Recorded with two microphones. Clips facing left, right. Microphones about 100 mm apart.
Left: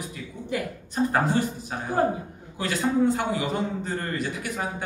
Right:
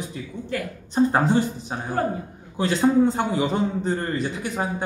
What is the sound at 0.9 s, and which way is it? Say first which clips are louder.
A man's voice: right 4 dB; 25° right (ahead or behind).